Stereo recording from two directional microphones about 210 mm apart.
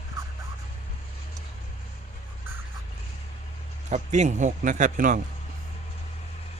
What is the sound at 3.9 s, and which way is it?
Speech, 35° right (ahead or behind).